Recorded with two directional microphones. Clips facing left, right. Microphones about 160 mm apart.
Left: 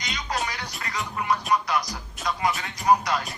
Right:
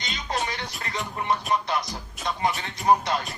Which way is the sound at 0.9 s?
25° right (ahead or behind).